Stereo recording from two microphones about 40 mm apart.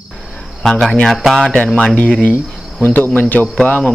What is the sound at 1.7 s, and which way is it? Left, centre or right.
Speech, left.